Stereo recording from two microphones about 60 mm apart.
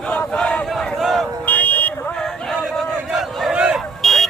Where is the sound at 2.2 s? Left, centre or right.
Centre.